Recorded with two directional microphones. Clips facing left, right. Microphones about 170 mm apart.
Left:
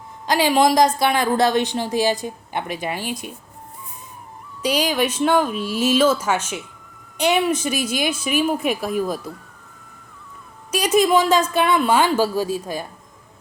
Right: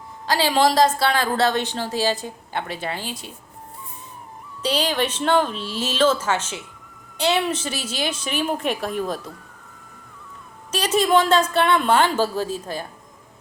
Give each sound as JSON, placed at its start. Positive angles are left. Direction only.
{"t": 0.3, "sound": "speech", "side_deg": 15}
{"t": 4.6, "sound": "speech", "side_deg": 10}
{"t": 10.7, "sound": "speech", "side_deg": 10}